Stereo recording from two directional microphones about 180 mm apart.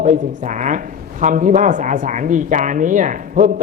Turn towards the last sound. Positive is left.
turn(degrees=-45)  # may be behind; listen again after turning